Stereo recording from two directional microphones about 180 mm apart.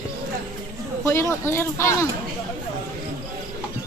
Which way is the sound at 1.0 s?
15° left (ahead or behind).